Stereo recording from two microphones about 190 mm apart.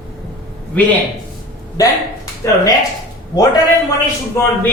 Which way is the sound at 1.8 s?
20° left (ahead or behind).